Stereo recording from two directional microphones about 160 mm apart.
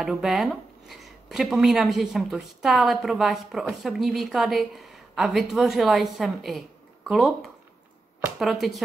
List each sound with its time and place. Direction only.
0.0 s speech: centre (ahead or behind)